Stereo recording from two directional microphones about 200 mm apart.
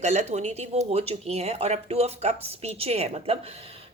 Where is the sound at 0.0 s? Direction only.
35° right (ahead or behind).